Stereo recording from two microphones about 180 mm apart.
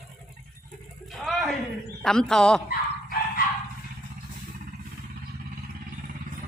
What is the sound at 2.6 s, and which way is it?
Dog, 55° left (ahead or behind).